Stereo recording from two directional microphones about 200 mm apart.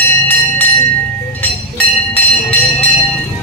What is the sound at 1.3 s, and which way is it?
Train, 10° left (ahead or behind).